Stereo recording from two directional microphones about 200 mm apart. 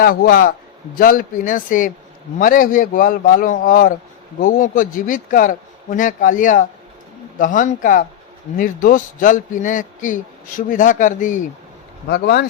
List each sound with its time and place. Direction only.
0.0 s a man's voice: 45° left (ahead or behind)
12.0 s a man's voice: 55° left (ahead or behind)